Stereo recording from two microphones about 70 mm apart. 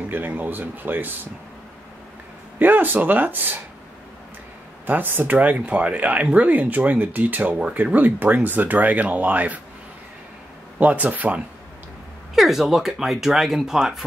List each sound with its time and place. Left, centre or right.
0.0 s speech: right
2.6 s speech: right
4.8 s speech: right
10.8 s speech: centre
12.4 s speech: centre